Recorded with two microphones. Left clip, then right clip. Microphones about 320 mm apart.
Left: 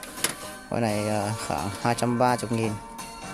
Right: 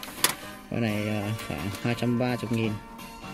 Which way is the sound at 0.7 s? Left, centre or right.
Left.